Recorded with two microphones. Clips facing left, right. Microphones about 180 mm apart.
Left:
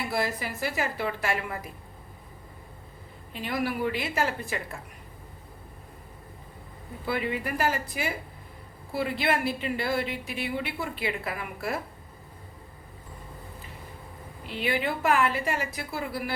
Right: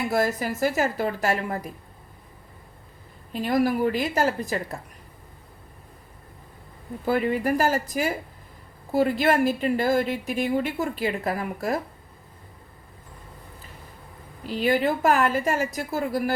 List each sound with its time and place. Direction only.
0.1 s a woman's voice: 45° right (ahead or behind)
3.3 s a woman's voice: 40° right (ahead or behind)
7.0 s a woman's voice: 45° right (ahead or behind)
14.4 s speech: 40° right (ahead or behind)